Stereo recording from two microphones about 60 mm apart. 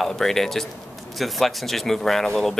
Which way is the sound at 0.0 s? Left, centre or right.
Centre.